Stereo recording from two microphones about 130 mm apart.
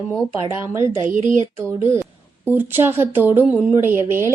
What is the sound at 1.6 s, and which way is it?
A woman's voice, 20° right (ahead or behind).